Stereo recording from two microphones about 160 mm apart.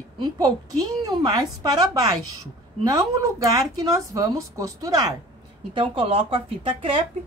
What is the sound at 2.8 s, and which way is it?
Speech, 20° right (ahead or behind).